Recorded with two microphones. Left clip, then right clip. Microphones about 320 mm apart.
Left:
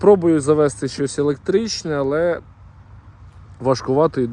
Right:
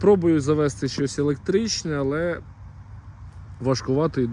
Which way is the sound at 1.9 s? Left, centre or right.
Left.